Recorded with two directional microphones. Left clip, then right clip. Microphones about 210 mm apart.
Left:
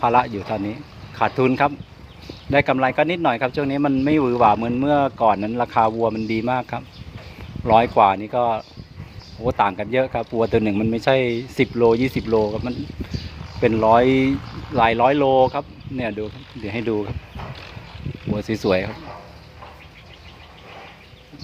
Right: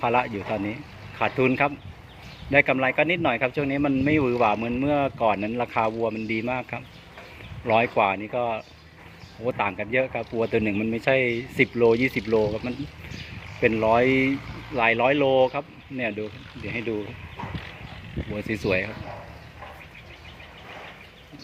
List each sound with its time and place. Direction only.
0.0 s speech: 15° left (ahead or behind)
18.3 s speech: 20° left (ahead or behind)